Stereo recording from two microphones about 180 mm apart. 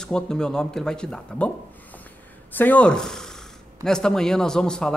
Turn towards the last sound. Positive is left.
turn(degrees=5)  # may be behind; listen again after turning